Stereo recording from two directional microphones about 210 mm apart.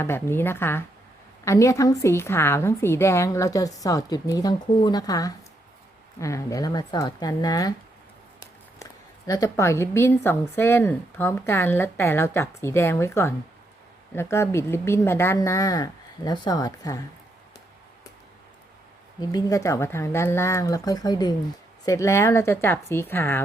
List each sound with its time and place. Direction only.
0.0 s speech: 10° left (ahead or behind)
19.3 s speech: 15° left (ahead or behind)